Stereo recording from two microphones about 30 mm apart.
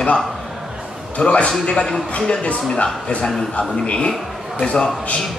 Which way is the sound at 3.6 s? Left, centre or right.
Left.